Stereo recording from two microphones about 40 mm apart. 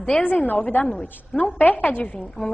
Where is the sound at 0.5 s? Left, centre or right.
Left.